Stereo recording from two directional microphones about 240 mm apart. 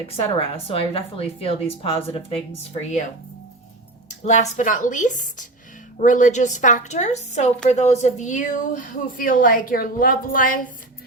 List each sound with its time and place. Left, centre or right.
0.3 s speech: left
4.3 s a woman's voice: left